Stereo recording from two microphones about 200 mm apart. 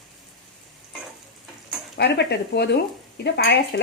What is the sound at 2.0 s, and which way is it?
Speech, 55° left (ahead or behind).